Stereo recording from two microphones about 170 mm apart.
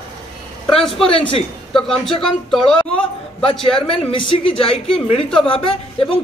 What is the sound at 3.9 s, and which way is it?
A woman's voice, 30° left (ahead or behind).